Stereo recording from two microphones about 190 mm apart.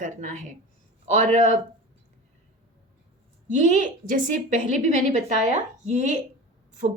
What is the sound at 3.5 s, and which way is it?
A woman's voice, 40° right (ahead or behind).